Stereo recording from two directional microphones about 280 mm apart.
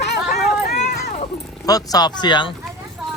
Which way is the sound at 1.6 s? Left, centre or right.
Centre.